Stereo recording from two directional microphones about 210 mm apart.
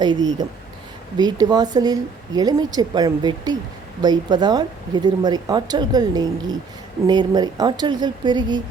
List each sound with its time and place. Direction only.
0.0 s a woman's voice: 20° right (ahead or behind)